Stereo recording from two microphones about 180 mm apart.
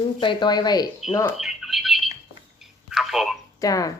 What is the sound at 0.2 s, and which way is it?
Speech, 25° left (ahead or behind).